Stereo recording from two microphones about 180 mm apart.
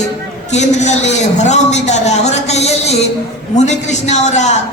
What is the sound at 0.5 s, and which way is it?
A man's voice, 40° left (ahead or behind).